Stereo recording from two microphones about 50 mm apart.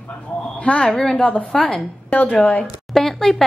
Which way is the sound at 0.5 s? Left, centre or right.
Left.